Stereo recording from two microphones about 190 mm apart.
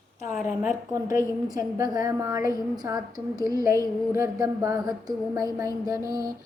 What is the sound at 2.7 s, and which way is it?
Speech, 20° right (ahead or behind).